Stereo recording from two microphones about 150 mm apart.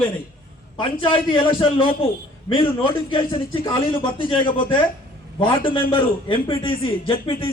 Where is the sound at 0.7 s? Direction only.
35° left (ahead or behind).